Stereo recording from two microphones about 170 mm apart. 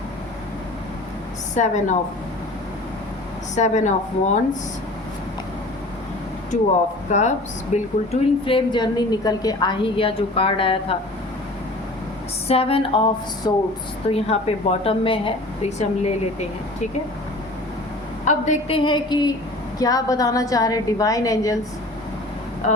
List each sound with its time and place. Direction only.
1.5 s a woman's voice: 45° left (ahead or behind)
3.5 s a woman's voice: 45° left (ahead or behind)
7.1 s a woman's voice: 45° left (ahead or behind)
12.5 s a woman's voice: 35° left (ahead or behind)
14.1 s a woman's voice: 35° left (ahead or behind)
18.3 s a woman's voice: 45° left (ahead or behind)
18.8 s a woman's voice: 30° left (ahead or behind)